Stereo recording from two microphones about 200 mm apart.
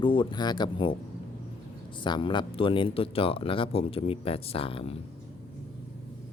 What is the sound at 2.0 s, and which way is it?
Speech, 25° left (ahead or behind).